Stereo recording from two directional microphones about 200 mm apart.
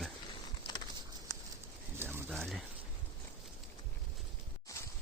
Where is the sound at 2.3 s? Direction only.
Centre (ahead or behind).